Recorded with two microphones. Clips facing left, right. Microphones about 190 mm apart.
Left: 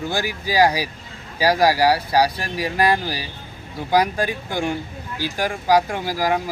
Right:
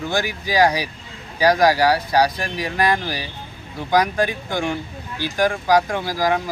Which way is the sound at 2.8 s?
35° left (ahead or behind).